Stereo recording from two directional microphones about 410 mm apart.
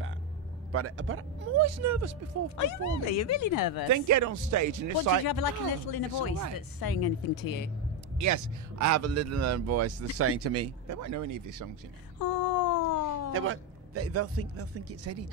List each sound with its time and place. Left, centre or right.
0.7 s a man's voice: right
2.5 s speech: left
3.9 s speech: right
5.2 s speech: left
8.2 s a man's voice: right
12.2 s a sound: left
13.3 s a man's voice: right